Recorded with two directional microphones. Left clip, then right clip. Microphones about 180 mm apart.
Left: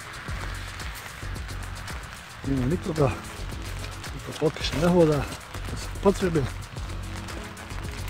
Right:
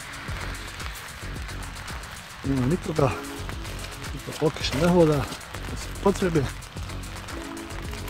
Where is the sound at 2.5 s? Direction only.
Centre (ahead or behind).